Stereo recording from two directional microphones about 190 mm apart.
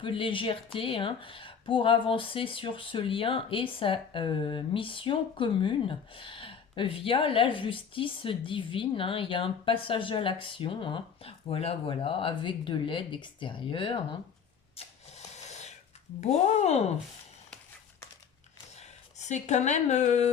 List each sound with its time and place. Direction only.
0.0 s speech: 25° left (ahead or behind)
14.8 s a sound: 35° left (ahead or behind)
16.2 s speech: 35° left (ahead or behind)
18.8 s speech: 35° left (ahead or behind)